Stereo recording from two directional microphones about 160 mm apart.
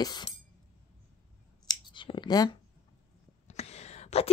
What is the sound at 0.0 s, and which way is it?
Speech, 25° left (ahead or behind).